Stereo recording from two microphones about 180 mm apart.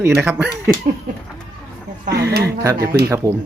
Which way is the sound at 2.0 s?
65° right (ahead or behind).